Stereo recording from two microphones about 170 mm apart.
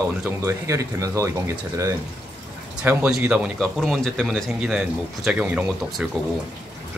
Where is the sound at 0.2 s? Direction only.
15° right (ahead or behind).